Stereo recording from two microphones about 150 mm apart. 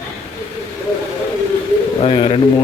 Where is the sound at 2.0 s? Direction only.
35° left (ahead or behind).